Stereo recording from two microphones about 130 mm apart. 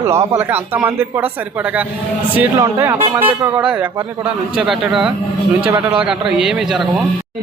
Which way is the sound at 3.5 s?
10° right (ahead or behind).